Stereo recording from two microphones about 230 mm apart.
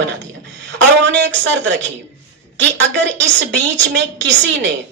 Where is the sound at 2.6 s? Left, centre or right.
Right.